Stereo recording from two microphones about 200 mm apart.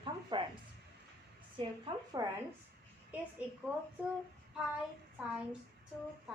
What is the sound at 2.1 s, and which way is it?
Speech, 20° right (ahead or behind).